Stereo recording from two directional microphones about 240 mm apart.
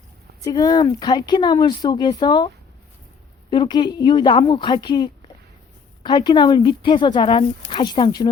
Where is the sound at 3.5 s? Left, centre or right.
Centre.